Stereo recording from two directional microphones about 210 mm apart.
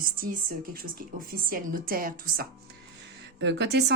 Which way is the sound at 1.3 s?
45° right (ahead or behind).